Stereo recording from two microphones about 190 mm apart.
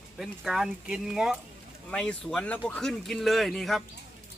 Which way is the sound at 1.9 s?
5° left (ahead or behind).